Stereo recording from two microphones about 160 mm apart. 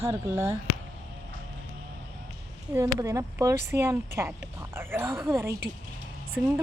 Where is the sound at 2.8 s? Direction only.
15° right (ahead or behind).